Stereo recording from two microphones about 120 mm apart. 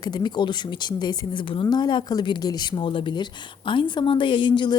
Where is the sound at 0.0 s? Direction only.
35° left (ahead or behind).